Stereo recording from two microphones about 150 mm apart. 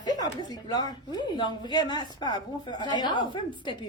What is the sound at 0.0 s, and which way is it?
A woman's voice, 30° left (ahead or behind).